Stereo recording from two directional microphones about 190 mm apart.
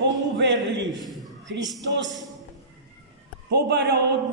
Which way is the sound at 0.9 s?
Centre (ahead or behind).